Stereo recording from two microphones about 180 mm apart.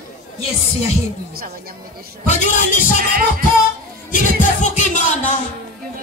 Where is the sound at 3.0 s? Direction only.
55° right (ahead or behind).